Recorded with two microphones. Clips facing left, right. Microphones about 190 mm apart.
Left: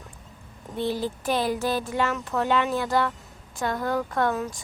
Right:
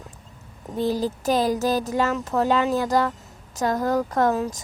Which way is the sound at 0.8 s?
40° right (ahead or behind).